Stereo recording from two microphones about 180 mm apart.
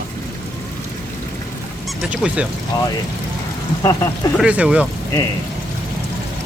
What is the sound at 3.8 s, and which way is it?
Speech, 20° left (ahead or behind).